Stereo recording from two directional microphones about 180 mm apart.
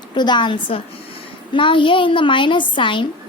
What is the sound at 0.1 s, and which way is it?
A woman's voice, 25° left (ahead or behind).